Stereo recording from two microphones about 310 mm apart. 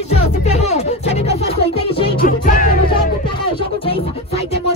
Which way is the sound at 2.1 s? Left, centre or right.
Left.